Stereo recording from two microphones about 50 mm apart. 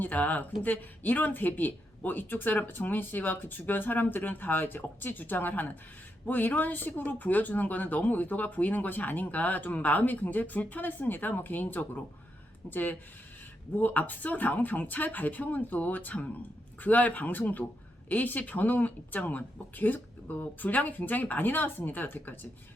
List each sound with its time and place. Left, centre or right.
0.0 s speech: left